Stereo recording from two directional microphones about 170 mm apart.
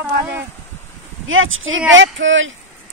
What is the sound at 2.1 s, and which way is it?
Speech, 90° right.